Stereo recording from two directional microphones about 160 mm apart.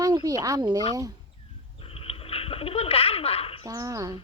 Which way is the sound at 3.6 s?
20° right (ahead or behind).